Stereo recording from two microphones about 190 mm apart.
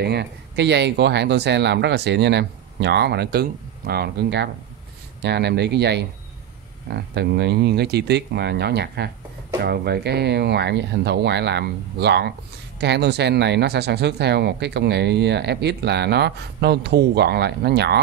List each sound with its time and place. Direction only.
0.0 s speech: 60° right (ahead or behind)